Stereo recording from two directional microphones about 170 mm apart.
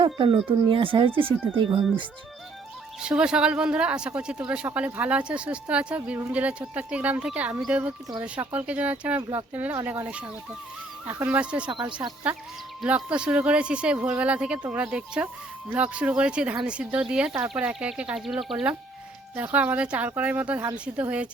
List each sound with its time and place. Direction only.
0.0 s speech: 30° right (ahead or behind)
3.0 s speech: 5° right (ahead or behind)
11.7 s speech: 30° right (ahead or behind)
12.8 s speech: 5° right (ahead or behind)